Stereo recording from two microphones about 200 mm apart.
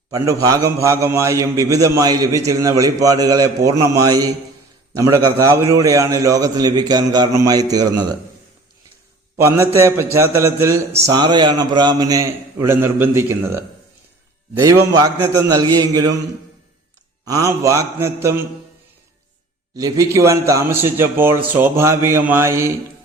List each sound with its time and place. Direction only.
0.1 s a man's voice: 15° right (ahead or behind)
9.4 s a man's voice: 10° right (ahead or behind)
14.6 s a man's voice: 20° right (ahead or behind)
17.2 s a man's voice: 15° right (ahead or behind)
19.7 s a man's voice: 20° right (ahead or behind)